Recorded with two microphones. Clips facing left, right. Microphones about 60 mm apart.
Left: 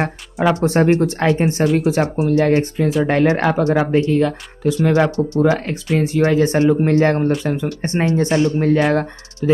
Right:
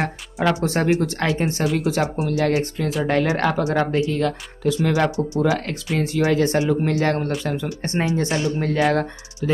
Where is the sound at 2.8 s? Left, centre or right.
Centre.